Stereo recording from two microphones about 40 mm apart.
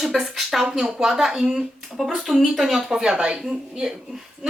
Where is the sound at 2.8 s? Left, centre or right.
Centre.